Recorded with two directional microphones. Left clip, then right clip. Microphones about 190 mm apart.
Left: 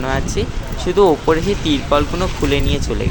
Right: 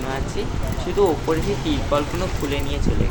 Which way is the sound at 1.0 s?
50° left (ahead or behind).